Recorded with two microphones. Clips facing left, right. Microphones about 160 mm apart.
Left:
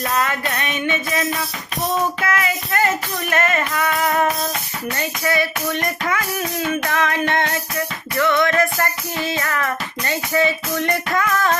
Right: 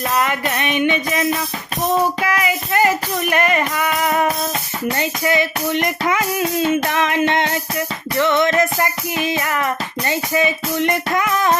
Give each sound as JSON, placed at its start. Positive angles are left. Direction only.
{"t": 0.2, "sound": "music", "side_deg": -15}